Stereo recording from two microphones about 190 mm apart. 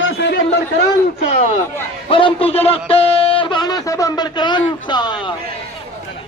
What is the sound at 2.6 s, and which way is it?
Speech, 30° left (ahead or behind).